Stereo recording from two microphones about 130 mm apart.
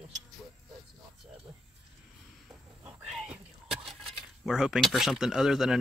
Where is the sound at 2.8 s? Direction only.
5° right (ahead or behind).